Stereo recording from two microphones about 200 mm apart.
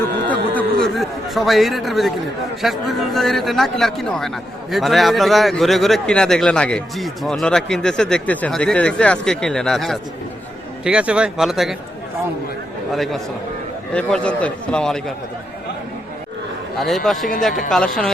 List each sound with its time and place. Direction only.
0.3 s a man's voice: 5° left (ahead or behind)
12.9 s speech: centre (ahead or behind)
16.7 s speech: centre (ahead or behind)